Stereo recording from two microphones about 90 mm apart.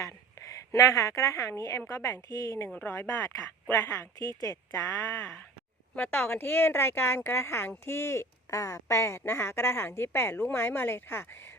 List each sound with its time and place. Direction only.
0.0 s a woman's voice: 40° left (ahead or behind)
2.6 s speech: 15° left (ahead or behind)
2.9 s speech: 30° left (ahead or behind)
5.9 s speech: 20° left (ahead or behind)